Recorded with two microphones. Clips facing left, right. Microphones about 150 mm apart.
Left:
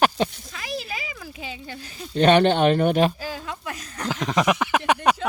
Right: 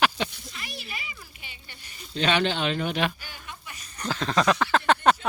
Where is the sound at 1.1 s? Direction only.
90° left.